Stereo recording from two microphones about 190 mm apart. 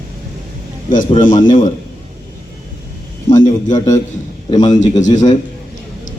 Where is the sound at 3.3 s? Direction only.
40° left (ahead or behind).